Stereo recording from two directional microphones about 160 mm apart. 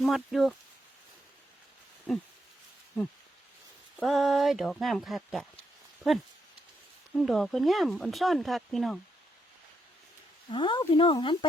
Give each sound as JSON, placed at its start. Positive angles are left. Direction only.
{"t": 0.0, "sound": "speech", "side_deg": 0}
{"t": 4.0, "sound": "speech", "side_deg": 0}
{"t": 7.2, "sound": "speech", "side_deg": 0}
{"t": 10.5, "sound": "speech", "side_deg": 30}